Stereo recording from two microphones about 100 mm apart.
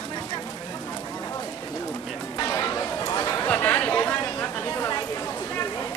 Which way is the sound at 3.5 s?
15° left (ahead or behind).